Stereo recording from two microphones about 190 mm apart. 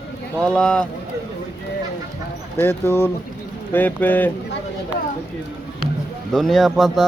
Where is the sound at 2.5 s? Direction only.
10° left (ahead or behind).